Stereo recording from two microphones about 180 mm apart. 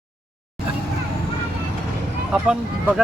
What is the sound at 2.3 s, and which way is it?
Speech, 5° right (ahead or behind).